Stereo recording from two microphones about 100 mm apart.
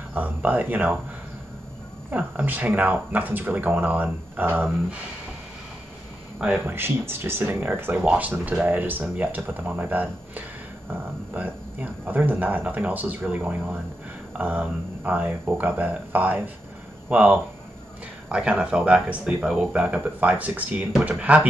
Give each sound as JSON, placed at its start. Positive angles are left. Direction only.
{"t": 0.1, "sound": "speech", "side_deg": -15}
{"t": 2.0, "sound": "speech", "side_deg": -15}
{"t": 6.6, "sound": "speech", "side_deg": -20}